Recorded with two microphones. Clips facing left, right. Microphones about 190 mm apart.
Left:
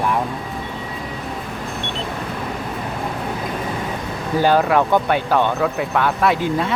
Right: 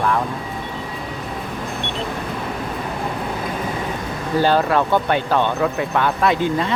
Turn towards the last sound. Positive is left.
turn(degrees=5)  # may be behind; listen again after turning